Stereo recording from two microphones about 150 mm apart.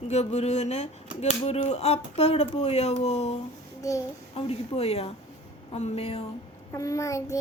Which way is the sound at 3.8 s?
20° left (ahead or behind).